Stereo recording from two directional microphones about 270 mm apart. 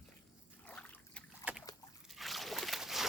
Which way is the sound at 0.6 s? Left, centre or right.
Centre.